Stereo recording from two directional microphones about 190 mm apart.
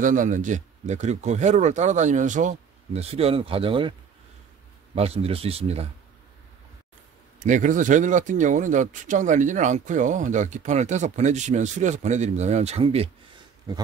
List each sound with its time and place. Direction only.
0.0 s speech: 45° right (ahead or behind); by 3.9 s 25° right (ahead or behind)
4.9 s speech: 30° right (ahead or behind)
7.3 s speech: 40° right (ahead or behind)